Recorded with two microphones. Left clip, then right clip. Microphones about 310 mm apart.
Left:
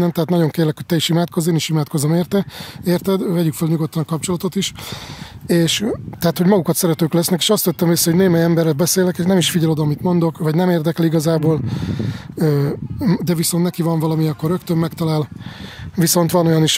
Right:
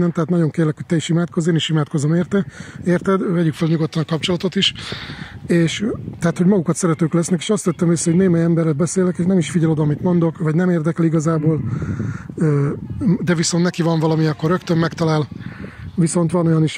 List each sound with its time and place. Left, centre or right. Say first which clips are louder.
0.0 s speech: left 2 dB; centre
16.0 s speech: left 4 dB; left